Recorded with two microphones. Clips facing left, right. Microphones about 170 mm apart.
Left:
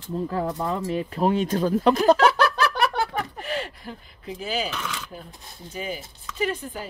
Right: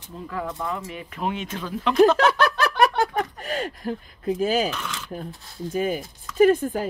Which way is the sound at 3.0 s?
45° right (ahead or behind).